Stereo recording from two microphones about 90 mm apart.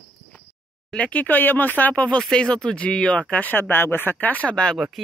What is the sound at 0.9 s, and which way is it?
Speech, 15° left (ahead or behind).